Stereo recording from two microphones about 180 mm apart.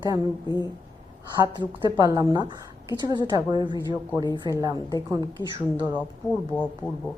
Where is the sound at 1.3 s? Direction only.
25° right (ahead or behind).